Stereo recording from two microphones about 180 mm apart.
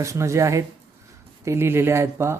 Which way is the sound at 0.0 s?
15° right (ahead or behind).